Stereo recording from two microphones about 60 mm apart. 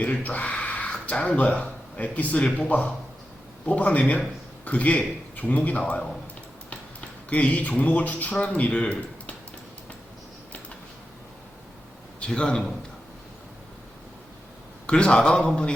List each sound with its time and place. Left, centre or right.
0.0 s a man's voice: left
7.3 s a man's voice: left
12.2 s a man's voice: centre
14.8 s a man's voice: centre